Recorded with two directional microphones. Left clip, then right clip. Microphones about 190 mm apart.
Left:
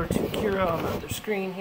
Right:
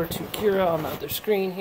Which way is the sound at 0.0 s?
35° right (ahead or behind).